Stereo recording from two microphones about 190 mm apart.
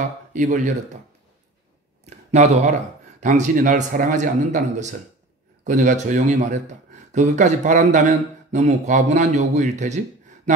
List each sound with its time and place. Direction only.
0.3 s speech: 40° right (ahead or behind)
2.0 s speech: 35° right (ahead or behind)